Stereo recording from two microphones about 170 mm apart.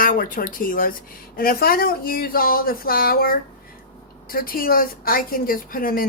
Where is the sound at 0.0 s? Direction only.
55° left (ahead or behind).